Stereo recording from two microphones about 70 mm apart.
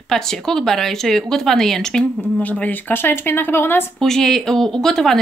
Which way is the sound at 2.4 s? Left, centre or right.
Left.